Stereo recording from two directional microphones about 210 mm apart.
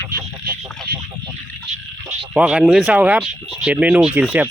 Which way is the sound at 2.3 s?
5° right (ahead or behind).